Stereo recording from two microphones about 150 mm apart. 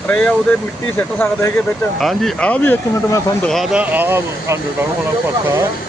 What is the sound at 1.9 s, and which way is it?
Speech, centre (ahead or behind).